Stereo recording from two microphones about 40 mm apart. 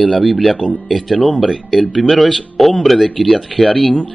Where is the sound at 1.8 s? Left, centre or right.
Centre.